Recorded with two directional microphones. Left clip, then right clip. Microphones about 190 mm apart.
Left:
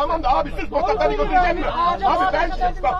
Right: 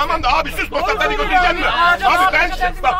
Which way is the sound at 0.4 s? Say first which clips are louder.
Right 3 dB; 15° right (ahead or behind).